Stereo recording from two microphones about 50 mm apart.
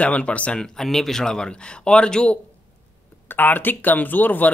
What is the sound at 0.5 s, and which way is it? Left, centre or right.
Speech, centre.